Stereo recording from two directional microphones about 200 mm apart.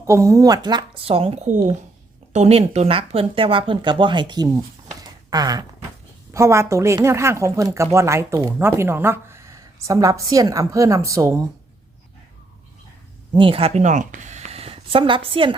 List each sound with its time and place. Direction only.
0.0 s speech: 15° right (ahead or behind)
13.3 s speech: 25° right (ahead or behind)